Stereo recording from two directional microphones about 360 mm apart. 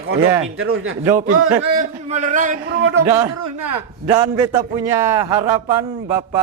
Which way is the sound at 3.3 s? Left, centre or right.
Right.